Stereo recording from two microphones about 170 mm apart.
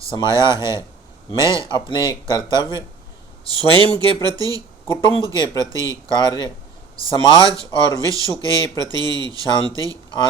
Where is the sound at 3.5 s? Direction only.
25° right (ahead or behind).